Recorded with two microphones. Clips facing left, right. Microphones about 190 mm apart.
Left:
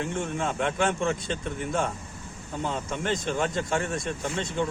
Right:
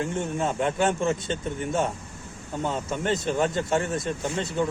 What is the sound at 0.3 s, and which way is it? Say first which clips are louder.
Speech: right 3 dB; 35° right (ahead or behind).